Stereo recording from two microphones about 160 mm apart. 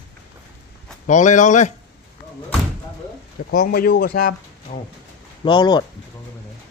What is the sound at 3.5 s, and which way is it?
Speech, 75° left (ahead or behind).